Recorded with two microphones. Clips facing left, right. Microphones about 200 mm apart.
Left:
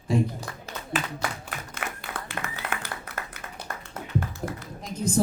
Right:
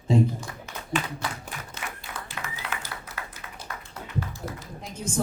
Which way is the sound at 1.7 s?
55° left (ahead or behind).